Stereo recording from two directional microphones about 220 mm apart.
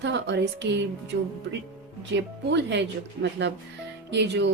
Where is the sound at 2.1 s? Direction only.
50° right (ahead or behind).